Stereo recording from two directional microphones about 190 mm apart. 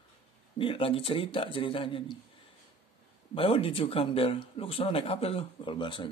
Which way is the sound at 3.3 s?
30° left (ahead or behind).